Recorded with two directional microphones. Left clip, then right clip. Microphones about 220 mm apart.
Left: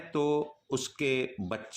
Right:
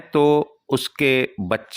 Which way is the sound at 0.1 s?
35° right (ahead or behind).